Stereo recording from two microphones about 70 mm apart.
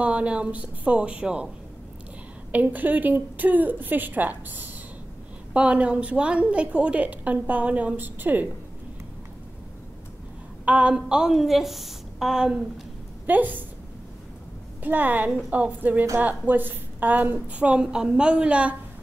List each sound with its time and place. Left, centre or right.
0.0 s a woman's voice: centre
2.5 s a woman's voice: right
10.6 s a woman's voice: centre
13.3 s a woman's voice: right
14.8 s a woman's voice: right